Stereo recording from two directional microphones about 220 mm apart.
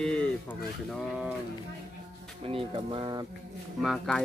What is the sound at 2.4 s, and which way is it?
Speech, 25° right (ahead or behind).